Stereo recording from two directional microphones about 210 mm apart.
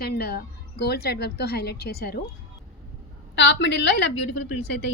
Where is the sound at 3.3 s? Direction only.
55° left (ahead or behind).